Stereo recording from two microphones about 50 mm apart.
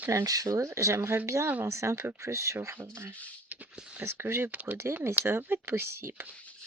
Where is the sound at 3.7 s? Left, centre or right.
Centre.